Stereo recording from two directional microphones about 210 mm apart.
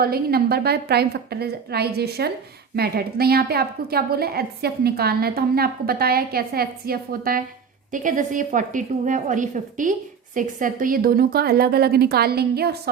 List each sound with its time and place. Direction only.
0.0 s a woman's voice: 45° right (ahead or behind)